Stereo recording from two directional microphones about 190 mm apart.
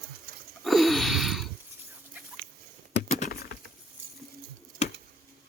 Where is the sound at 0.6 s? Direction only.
Centre (ahead or behind).